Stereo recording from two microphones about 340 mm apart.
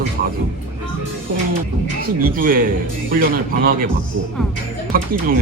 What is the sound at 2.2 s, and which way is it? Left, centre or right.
Speech, right.